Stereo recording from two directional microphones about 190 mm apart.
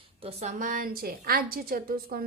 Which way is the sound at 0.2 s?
35° right (ahead or behind).